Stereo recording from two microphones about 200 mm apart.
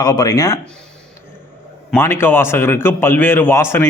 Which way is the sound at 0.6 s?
5° left (ahead or behind).